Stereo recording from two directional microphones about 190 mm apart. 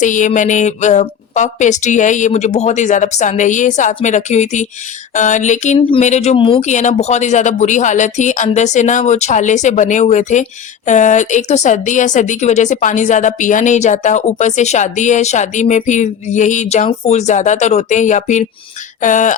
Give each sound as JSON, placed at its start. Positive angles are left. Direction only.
{"t": 0.0, "sound": "a woman's voice", "side_deg": 40}